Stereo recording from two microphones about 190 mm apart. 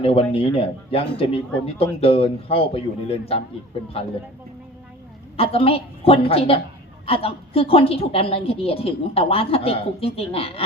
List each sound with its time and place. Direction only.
0.0 s a man's voice: 30° left (ahead or behind)
5.4 s a man's voice: 30° left (ahead or behind)